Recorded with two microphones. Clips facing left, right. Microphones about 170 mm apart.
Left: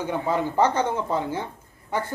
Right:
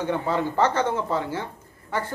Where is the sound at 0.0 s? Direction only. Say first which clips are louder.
Even; 15° left (ahead or behind).